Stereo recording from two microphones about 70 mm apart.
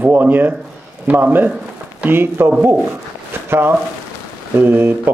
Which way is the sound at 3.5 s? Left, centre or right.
Right.